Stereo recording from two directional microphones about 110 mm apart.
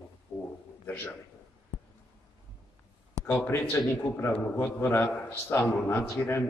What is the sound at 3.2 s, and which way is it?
A man's voice, 20° left (ahead or behind).